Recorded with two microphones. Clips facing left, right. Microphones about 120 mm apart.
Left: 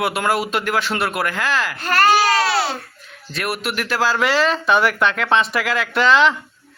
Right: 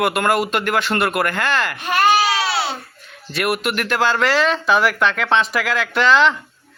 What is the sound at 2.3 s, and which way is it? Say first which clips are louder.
Babbling: left 3 dB; 40° left (ahead or behind).